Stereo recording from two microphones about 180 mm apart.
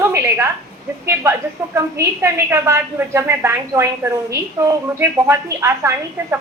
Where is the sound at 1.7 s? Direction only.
15° right (ahead or behind).